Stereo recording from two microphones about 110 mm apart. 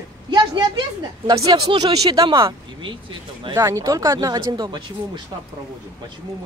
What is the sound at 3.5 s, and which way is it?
Speech, 30° right (ahead or behind).